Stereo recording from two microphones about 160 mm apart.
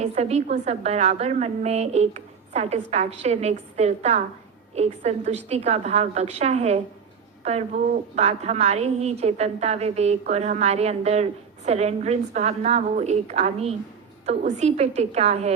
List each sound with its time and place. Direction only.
0.0 s a woman's voice: 45° right (ahead or behind)